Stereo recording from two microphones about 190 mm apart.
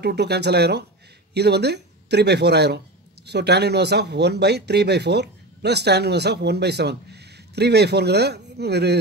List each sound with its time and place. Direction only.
0.0 s speech: 60° right (ahead or behind)